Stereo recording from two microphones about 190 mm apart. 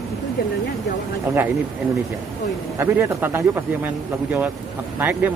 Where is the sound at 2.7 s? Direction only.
10° right (ahead or behind).